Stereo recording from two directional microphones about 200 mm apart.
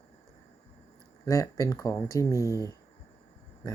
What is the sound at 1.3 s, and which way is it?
Speech, 15° left (ahead or behind).